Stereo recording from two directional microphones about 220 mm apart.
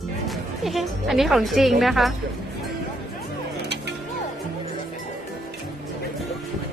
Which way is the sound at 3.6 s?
50° right (ahead or behind).